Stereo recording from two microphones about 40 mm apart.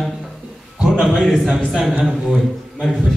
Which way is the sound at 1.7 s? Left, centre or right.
Centre.